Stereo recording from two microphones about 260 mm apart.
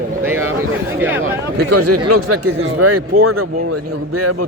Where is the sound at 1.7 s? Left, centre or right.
Right.